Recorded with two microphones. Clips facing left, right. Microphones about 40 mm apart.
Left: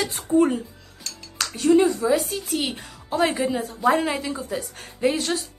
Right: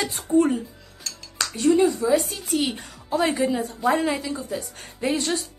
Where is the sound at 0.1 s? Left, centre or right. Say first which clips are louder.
Even; centre.